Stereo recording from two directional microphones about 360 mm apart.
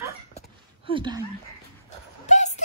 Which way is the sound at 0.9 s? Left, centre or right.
Centre.